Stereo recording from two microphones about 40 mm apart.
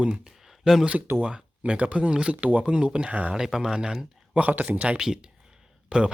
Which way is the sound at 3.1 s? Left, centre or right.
Right.